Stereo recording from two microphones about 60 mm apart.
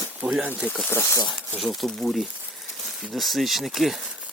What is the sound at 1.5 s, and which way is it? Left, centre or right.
Speech, centre.